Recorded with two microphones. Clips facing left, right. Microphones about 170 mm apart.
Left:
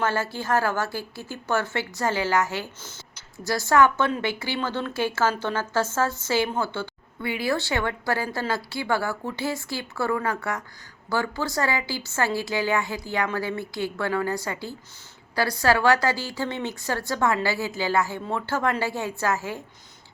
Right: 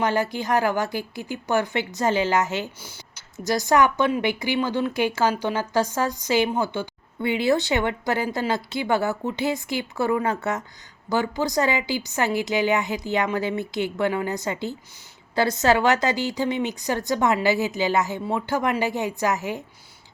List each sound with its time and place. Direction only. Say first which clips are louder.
0.0 s a woman's voice: right 3 dB; 15° right (ahead or behind)